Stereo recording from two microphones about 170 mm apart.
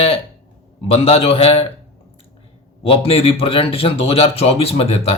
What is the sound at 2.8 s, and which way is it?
Speech, 35° left (ahead or behind).